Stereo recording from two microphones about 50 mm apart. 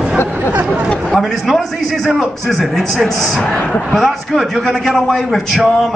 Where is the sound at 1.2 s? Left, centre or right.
Centre.